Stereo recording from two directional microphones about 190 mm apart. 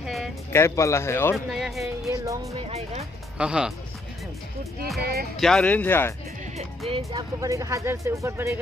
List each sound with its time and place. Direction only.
0.0 s music: centre (ahead or behind)
0.5 s speech: 15° left (ahead or behind)
1.3 s speech: centre (ahead or behind)
2.0 s speech: 15° right (ahead or behind)
2.6 s speech: 35° right (ahead or behind)
3.3 s speech: 5° right (ahead or behind)
5.4 s speech: 5° left (ahead or behind)
6.9 s speech: 30° right (ahead or behind)
7.3 s speech: 15° right (ahead or behind)